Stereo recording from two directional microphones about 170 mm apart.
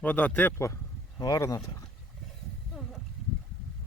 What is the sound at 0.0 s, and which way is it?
Speech, 10° left (ahead or behind).